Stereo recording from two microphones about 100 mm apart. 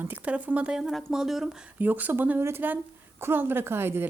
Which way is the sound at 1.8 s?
15° right (ahead or behind).